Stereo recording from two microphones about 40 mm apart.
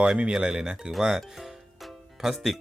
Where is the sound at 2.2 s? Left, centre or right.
Centre.